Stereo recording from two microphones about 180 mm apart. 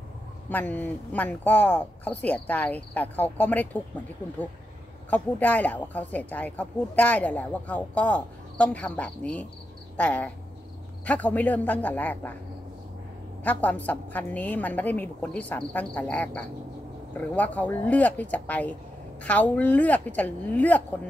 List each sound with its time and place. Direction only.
0.5 s speech: 10° left (ahead or behind)
5.1 s speech: 10° left (ahead or behind)
13.4 s speech: 10° left (ahead or behind)